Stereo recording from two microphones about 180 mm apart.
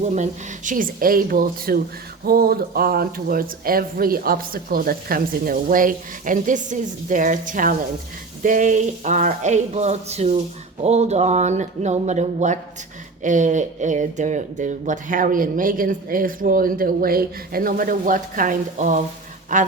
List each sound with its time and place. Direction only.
0.1 s speech: 45° right (ahead or behind)